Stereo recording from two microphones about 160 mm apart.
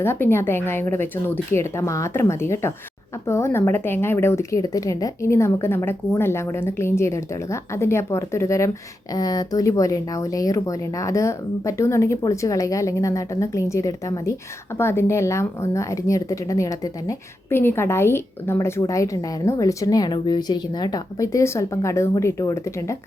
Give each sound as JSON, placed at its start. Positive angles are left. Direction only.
{"t": 0.0, "sound": "a woman's voice", "side_deg": 15}